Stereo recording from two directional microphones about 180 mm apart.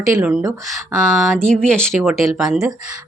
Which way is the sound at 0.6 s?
Centre (ahead or behind).